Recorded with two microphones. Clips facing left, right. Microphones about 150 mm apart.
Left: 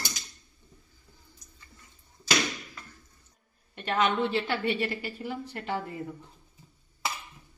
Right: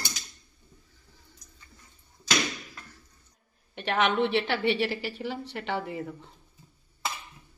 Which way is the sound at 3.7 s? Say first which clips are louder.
Right 1 dB; 80° right.